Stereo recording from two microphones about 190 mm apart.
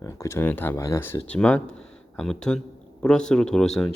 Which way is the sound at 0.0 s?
15° left (ahead or behind).